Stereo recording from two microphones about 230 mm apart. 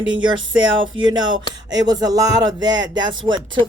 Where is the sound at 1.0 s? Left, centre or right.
Centre.